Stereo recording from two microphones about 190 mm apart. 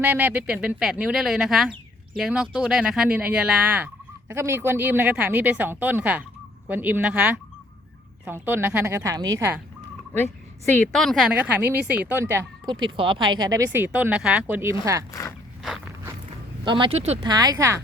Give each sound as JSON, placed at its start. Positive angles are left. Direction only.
{"t": 0.0, "sound": "speech", "side_deg": -10}
{"t": 10.8, "sound": "speech", "side_deg": 0}
{"t": 15.6, "sound": "walk", "side_deg": 0}
{"t": 16.6, "sound": "speech", "side_deg": -25}
{"t": 17.2, "sound": "speech", "side_deg": -20}